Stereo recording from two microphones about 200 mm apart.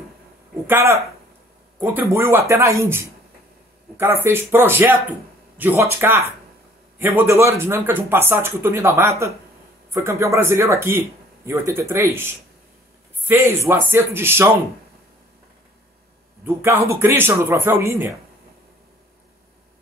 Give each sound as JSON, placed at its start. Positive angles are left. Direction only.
{"t": 0.7, "sound": "speech", "side_deg": -15}
{"t": 13.3, "sound": "speech", "side_deg": -15}
{"t": 16.4, "sound": "speech", "side_deg": -15}